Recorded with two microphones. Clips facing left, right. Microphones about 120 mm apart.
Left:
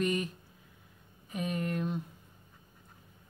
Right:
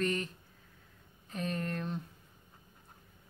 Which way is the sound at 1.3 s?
10° left (ahead or behind).